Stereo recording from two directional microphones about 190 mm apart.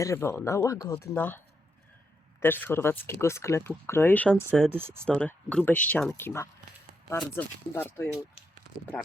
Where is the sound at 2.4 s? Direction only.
10° left (ahead or behind).